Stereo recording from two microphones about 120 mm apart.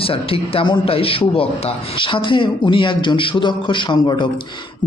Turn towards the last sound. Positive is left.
turn(degrees=40)  # may be behind; listen again after turning